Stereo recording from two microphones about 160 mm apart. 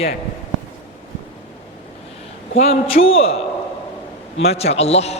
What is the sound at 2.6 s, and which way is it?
Speech, 40° left (ahead or behind).